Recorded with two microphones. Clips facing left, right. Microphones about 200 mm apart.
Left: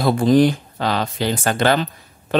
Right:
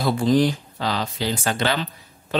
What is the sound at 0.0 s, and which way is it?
Speech, 55° left (ahead or behind).